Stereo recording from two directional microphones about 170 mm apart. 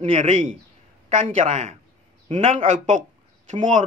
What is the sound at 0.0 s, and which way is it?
Speech, 40° right (ahead or behind).